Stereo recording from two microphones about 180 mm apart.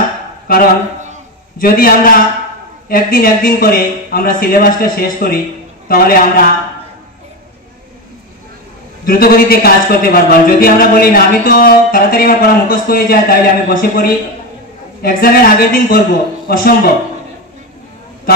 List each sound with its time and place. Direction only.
0.5 s speech: 55° left (ahead or behind)
9.0 s speech: 55° left (ahead or behind)